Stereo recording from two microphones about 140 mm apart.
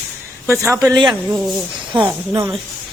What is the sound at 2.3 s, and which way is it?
Speech, 20° right (ahead or behind).